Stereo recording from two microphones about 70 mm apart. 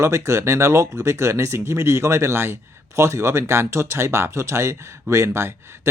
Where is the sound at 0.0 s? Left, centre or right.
Right.